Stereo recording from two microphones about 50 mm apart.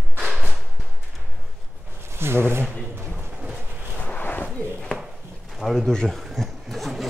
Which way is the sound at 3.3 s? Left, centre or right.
Right.